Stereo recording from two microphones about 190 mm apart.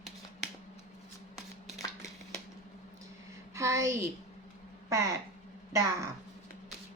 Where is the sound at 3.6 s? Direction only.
15° right (ahead or behind).